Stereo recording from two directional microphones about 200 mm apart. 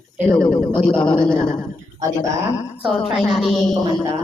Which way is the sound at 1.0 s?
25° left (ahead or behind).